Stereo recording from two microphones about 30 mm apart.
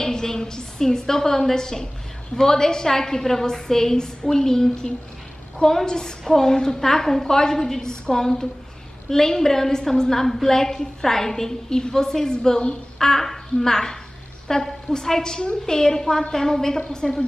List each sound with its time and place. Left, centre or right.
0.0 s a woman's voice: centre
13.0 s a woman's voice: centre